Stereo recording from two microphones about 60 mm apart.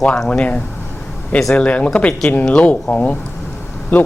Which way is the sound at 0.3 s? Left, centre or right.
Left.